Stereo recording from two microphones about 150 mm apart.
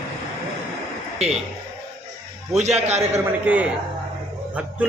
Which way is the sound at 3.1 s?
10° right (ahead or behind).